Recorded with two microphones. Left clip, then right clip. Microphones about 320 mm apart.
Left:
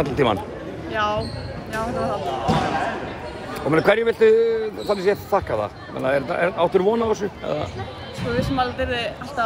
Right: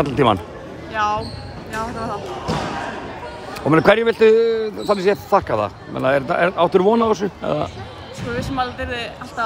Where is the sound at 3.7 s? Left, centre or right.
Right.